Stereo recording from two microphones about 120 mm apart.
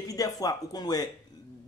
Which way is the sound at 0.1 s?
30° left (ahead or behind).